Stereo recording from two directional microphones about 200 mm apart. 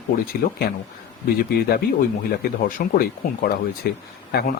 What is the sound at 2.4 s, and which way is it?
Speech, 45° left (ahead or behind).